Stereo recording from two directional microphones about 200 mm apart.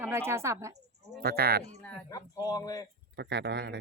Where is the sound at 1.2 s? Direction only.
50° right (ahead or behind).